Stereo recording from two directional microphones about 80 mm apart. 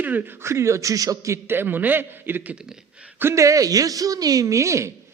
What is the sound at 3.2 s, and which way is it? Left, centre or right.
Speech, right.